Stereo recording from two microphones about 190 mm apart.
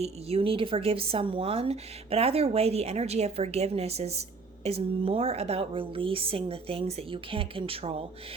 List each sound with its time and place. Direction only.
0.0 s a woman's voice: 30° right (ahead or behind)